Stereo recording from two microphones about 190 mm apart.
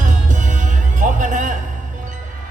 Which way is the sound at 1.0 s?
40° right (ahead or behind).